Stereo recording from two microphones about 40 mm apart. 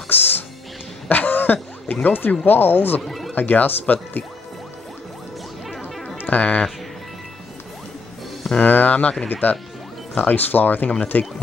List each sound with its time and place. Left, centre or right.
0.1 s music: left
1.0 s throat clearing: left
2.4 s speech: left
3.0 s speech: centre
3.3 s speech: left
6.3 s speech: left
8.5 s speech: left